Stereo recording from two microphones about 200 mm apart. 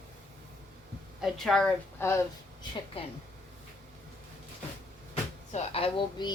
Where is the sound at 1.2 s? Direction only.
Centre (ahead or behind).